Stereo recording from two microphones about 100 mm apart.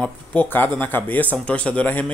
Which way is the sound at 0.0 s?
15° left (ahead or behind).